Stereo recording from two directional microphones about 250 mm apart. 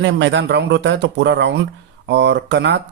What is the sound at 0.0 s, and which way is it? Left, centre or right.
Speech, right.